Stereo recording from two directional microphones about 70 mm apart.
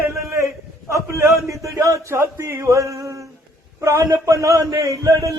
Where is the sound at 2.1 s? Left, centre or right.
Right.